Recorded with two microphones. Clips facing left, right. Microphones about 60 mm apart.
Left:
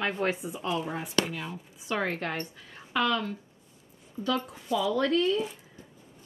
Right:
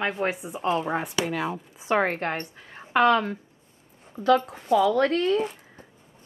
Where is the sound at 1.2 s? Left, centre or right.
Right.